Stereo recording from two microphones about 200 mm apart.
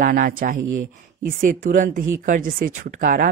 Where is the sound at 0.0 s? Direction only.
45° right (ahead or behind).